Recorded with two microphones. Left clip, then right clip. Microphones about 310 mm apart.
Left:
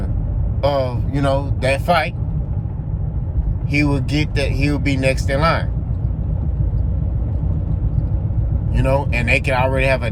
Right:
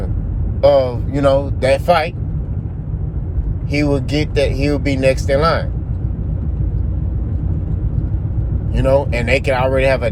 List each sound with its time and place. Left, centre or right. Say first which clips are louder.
0.6 s speech: right 7 dB; centre
3.7 s speech: right 2 dB; centre
8.7 s speech: right 4 dB; centre